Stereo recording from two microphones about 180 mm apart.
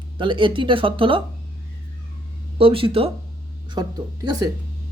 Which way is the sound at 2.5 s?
30° right (ahead or behind).